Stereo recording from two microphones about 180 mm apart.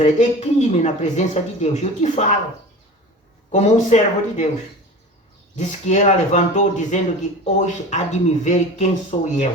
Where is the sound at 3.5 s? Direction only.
40° left (ahead or behind).